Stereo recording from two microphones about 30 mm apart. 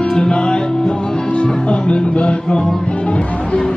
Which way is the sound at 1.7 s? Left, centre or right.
Left.